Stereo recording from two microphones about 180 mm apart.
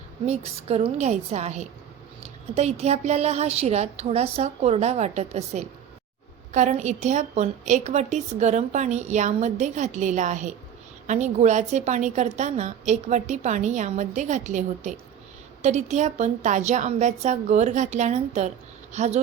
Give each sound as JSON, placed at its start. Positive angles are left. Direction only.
{"t": 0.3, "sound": "a woman's voice", "side_deg": -35}